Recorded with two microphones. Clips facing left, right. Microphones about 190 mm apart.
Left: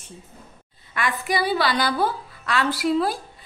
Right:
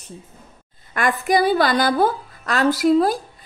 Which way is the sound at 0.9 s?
45° right (ahead or behind).